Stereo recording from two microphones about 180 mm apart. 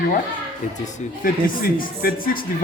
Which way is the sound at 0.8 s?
50° left (ahead or behind).